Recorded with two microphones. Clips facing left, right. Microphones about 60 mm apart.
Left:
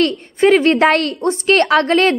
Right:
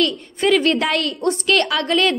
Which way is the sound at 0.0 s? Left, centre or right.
Left.